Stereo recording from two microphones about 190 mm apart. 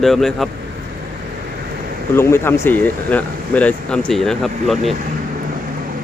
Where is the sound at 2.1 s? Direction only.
15° left (ahead or behind).